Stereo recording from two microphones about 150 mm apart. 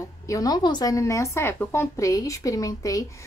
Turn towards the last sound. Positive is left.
turn(degrees=20)  # may be behind; listen again after turning